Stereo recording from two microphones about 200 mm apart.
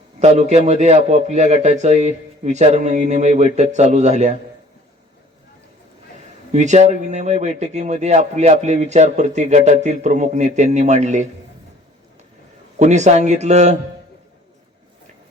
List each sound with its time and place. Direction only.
0.2 s speech: 35° right (ahead or behind)
6.5 s speech: 35° right (ahead or behind)
12.8 s speech: 35° right (ahead or behind)